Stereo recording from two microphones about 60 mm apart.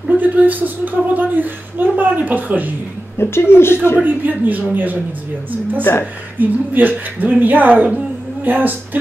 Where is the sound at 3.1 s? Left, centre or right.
Left.